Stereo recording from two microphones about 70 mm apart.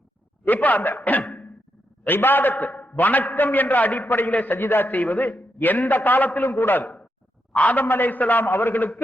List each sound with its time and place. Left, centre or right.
0.4 s a man's voice: left
1.2 s a sound: centre
2.0 s a man's voice: left